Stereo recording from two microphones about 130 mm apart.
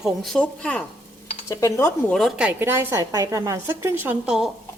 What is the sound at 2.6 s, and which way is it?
A woman's voice, 20° right (ahead or behind).